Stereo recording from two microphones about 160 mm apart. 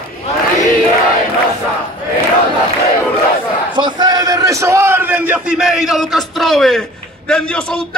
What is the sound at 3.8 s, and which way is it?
A man's voice, 25° right (ahead or behind).